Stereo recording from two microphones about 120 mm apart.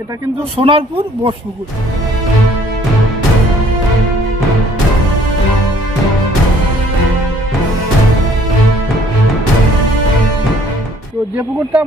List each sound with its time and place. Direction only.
0.5 s speech: 50° right (ahead or behind)
11.3 s speech: 15° right (ahead or behind)